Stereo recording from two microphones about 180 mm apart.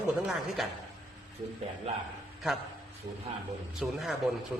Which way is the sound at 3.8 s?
Centre (ahead or behind).